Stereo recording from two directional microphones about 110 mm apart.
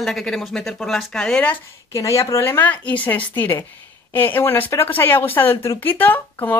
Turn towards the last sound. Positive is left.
turn(degrees=15)  # may be behind; listen again after turning